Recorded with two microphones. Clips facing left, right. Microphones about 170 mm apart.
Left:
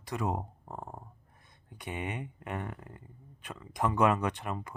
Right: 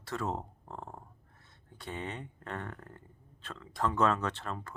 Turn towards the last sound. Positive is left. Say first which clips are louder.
# left 2 dB
turn(degrees=15)  # may be behind; listen again after turning